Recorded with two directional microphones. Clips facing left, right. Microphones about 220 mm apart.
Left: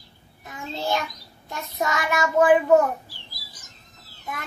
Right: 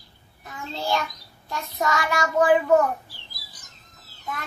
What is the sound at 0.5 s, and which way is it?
A child's voice, 20° left (ahead or behind).